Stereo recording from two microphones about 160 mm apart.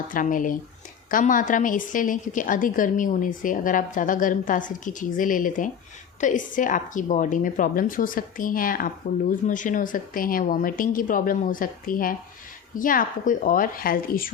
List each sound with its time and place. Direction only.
0.1 s a woman's voice: 55° left (ahead or behind)